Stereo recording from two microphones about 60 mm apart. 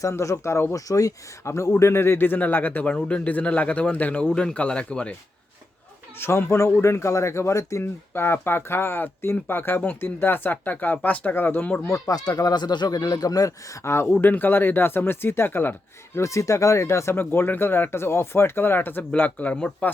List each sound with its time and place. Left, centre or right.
0.0 s speech: left
0.7 s speech: left
1.5 s speech: left
1.8 s a man's voice: left
4.3 s speech: centre
4.5 s a man's voice: left
6.1 s speech: left
8.1 s speech: left
11.9 s speech: left
13.8 s speech: left
14.2 s speech: left
16.1 s speech: left
17.2 s a man's voice: left